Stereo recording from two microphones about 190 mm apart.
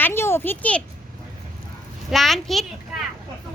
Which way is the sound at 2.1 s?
Centre (ahead or behind).